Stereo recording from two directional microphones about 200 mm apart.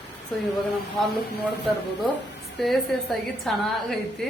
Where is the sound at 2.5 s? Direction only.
Centre (ahead or behind).